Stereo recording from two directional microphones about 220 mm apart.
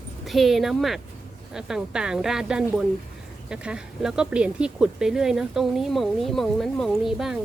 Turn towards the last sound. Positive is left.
turn(degrees=0)  # may be behind; listen again after turning